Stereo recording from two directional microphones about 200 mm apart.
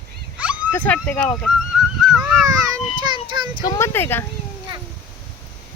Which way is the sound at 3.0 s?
20° right (ahead or behind).